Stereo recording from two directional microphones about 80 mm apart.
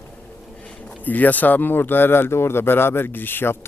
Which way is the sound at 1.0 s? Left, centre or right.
Left.